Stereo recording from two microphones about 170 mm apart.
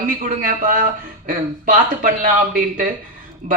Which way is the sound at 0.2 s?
55° right (ahead or behind).